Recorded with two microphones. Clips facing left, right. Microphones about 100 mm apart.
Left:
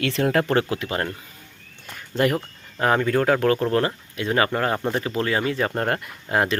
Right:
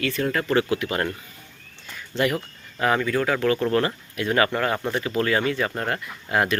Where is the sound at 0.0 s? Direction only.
75° left (ahead or behind).